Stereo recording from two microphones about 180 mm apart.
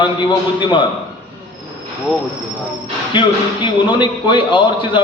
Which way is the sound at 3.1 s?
25° left (ahead or behind).